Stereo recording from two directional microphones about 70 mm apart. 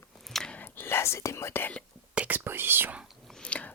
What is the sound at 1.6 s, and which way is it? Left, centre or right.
Speech, centre.